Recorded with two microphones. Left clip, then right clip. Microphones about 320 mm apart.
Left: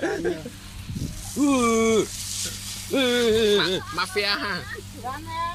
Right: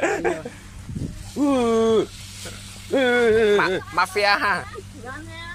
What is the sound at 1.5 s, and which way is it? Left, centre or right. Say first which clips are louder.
Speech: right 2 dB; right.